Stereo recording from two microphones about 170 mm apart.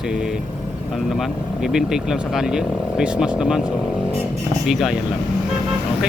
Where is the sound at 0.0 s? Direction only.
5° right (ahead or behind).